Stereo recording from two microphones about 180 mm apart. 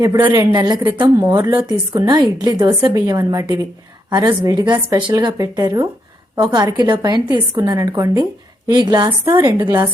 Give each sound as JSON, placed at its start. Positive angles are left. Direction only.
{"t": 0.3, "sound": "a woman's voice", "side_deg": -25}
{"t": 9.6, "sound": "a woman's voice", "side_deg": -10}